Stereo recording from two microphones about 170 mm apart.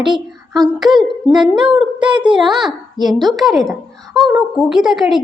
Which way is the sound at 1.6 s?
5° right (ahead or behind).